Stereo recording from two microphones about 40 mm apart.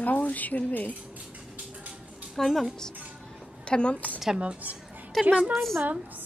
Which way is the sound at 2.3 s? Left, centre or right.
Centre.